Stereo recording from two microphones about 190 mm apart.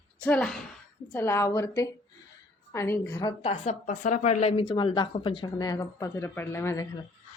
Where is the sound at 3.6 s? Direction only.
40° left (ahead or behind); by 6.8 s 15° left (ahead or behind).